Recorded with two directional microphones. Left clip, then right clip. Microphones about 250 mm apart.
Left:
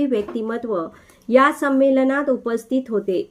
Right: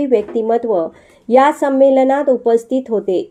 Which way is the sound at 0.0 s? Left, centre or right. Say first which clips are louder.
Right 7 dB; centre.